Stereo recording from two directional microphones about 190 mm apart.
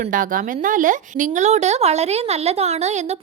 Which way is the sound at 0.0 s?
45° right (ahead or behind).